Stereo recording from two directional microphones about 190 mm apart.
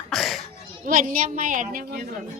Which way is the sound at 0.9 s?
45° right (ahead or behind).